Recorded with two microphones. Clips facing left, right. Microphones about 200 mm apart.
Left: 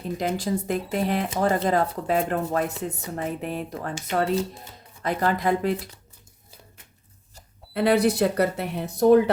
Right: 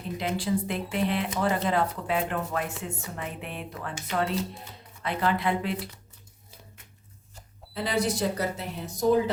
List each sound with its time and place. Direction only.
0.2 s speech: 45° left (ahead or behind)
7.7 s speech: 60° left (ahead or behind)